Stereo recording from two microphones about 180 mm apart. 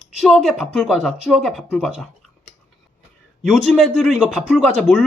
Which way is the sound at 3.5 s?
Centre (ahead or behind).